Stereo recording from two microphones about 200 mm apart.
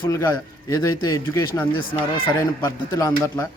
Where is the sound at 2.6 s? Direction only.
15° left (ahead or behind).